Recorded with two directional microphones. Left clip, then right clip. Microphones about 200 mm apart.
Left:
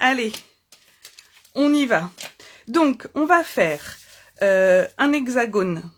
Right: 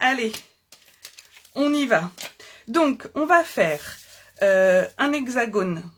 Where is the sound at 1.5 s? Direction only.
45° left (ahead or behind).